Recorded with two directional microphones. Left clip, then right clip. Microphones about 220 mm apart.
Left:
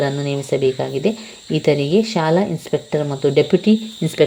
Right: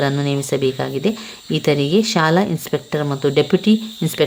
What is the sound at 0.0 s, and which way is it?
Speech, 5° right (ahead or behind).